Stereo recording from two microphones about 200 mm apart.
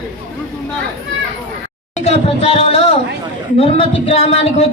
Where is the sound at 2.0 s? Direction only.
30° left (ahead or behind).